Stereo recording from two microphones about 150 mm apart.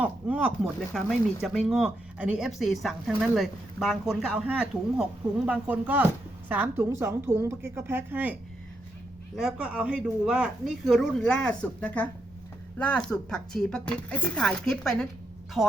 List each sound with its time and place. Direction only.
0.0 s a woman's voice: 10° right (ahead or behind)